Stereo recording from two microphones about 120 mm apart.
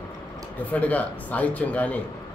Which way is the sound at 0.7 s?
10° left (ahead or behind).